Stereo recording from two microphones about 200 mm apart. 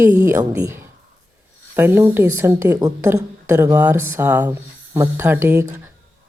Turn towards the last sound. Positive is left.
turn(degrees=-10)  # may be behind; listen again after turning